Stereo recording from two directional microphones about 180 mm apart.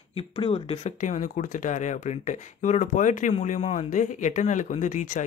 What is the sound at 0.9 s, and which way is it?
Speech, 45° left (ahead or behind).